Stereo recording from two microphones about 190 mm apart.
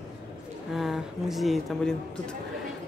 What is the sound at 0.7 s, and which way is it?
Speech, centre (ahead or behind).